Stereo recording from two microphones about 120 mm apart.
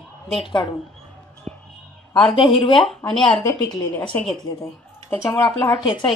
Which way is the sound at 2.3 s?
45° left (ahead or behind).